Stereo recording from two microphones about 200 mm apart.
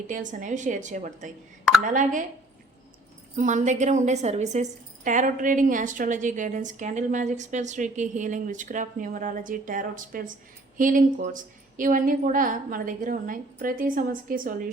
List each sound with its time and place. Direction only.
0.1 s a woman's voice: 40° right (ahead or behind)
3.3 s a woman's voice: 40° right (ahead or behind)